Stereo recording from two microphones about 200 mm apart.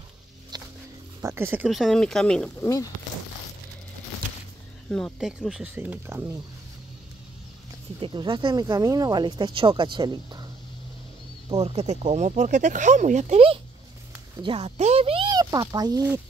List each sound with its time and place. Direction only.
0.5 s a sound: 20° right (ahead or behind)
1.2 s speech: 10° right (ahead or behind)
1.7 s speech: centre (ahead or behind)
4.8 s speech: centre (ahead or behind)
8.0 s speech: 25° right (ahead or behind)
11.4 s speech: 30° right (ahead or behind)